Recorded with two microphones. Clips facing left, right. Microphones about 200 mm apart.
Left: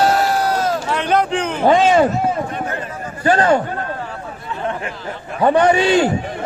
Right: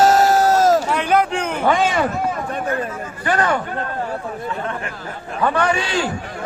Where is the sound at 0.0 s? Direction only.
45° right (ahead or behind).